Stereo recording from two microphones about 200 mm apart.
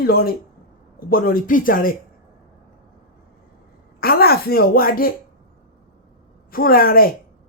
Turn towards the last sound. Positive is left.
turn(degrees=50)  # may be behind; listen again after turning